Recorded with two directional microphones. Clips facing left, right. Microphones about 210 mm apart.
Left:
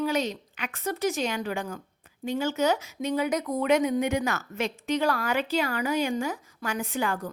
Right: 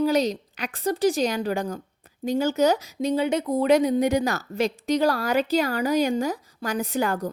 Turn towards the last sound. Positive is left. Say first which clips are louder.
# right 4 dB
turn(degrees=-40)  # may be behind; listen again after turning